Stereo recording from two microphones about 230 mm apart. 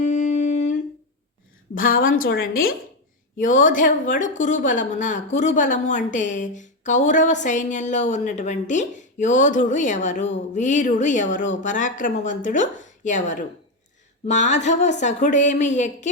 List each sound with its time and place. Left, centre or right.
0.0 s humming: left
1.7 s a woman's voice: left
3.3 s a woman's voice: left